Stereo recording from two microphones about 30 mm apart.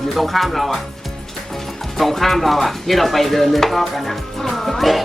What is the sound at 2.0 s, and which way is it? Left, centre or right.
Speech, centre.